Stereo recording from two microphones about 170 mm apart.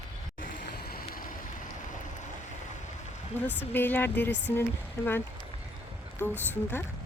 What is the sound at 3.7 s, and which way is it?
Speech, 10° left (ahead or behind).